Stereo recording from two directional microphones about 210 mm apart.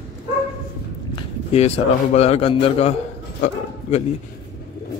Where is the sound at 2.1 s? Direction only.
30° left (ahead or behind).